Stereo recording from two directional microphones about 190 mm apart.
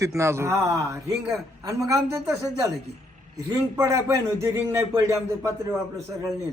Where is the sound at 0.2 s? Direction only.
15° right (ahead or behind).